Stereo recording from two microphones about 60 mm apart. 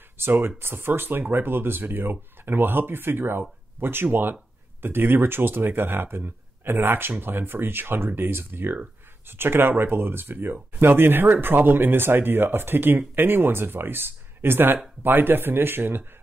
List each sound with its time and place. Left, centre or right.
0.2 s speech: right